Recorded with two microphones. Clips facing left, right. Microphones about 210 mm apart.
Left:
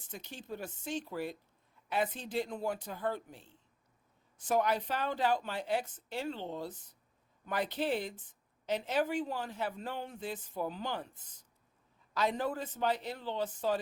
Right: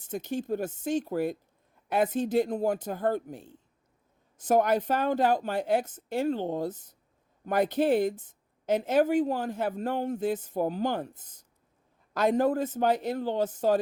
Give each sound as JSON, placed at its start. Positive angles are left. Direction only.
{"t": 0.0, "sound": "speech", "side_deg": -50}